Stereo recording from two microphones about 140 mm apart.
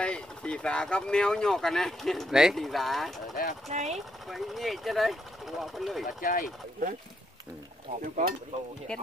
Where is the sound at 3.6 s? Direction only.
50° right (ahead or behind).